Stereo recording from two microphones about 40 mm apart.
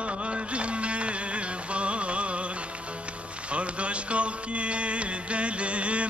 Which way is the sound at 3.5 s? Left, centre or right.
Right.